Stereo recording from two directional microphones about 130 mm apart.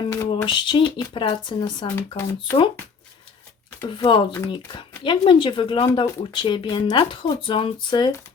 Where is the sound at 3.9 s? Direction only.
40° left (ahead or behind).